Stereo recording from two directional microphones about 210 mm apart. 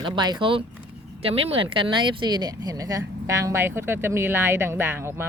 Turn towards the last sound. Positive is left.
turn(degrees=-10)  # may be behind; listen again after turning